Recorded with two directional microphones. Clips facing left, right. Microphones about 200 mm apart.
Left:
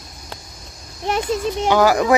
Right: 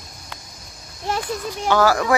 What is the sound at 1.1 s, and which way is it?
A child's voice, 20° left (ahead or behind).